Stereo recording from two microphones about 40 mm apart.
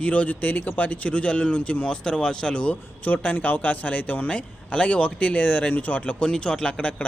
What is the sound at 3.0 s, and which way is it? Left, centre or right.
Speech, left.